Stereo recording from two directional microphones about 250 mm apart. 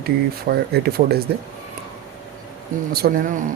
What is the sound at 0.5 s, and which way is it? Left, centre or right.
Speech, right.